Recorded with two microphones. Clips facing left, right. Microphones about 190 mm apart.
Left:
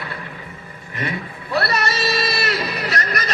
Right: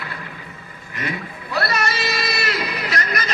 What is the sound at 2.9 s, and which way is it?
Music, 40° left (ahead or behind).